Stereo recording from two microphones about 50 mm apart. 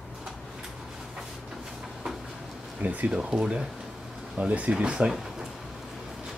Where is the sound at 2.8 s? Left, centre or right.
Right.